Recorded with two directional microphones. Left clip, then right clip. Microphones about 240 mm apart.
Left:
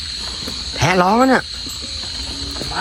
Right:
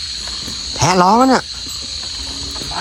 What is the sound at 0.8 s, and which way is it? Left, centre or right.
Speech, centre.